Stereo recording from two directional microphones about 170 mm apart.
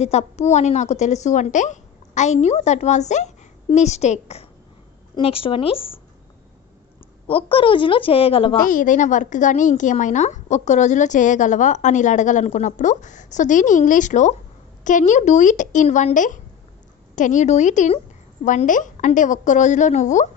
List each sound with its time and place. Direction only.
0.0 s a woman's voice: 40° left (ahead or behind)
7.2 s a woman's voice: 30° left (ahead or behind)
8.5 s a woman's voice: 50° left (ahead or behind)